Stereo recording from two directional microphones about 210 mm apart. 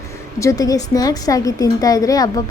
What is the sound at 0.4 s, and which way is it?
A woman's voice, 15° left (ahead or behind).